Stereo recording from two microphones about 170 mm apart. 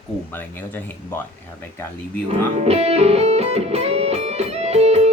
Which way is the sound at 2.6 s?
40° right (ahead or behind).